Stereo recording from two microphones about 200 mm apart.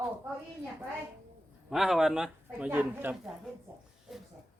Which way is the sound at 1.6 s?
Centre (ahead or behind).